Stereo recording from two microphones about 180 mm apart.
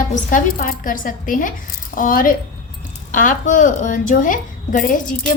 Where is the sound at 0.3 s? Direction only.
50° left (ahead or behind).